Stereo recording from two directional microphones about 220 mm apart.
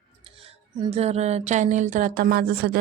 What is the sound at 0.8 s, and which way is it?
Speech, 25° right (ahead or behind).